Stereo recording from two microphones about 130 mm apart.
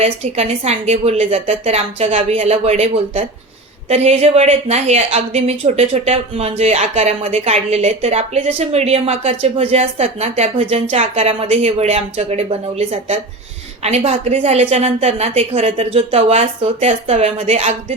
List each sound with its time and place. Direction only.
0.0 s a woman's voice: 55° right (ahead or behind)